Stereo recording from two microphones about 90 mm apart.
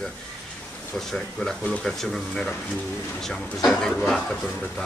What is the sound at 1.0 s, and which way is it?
Speech, 5° left (ahead or behind).